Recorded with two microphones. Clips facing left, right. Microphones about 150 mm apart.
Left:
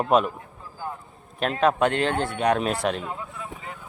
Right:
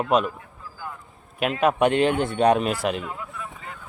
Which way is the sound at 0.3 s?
25° left (ahead or behind).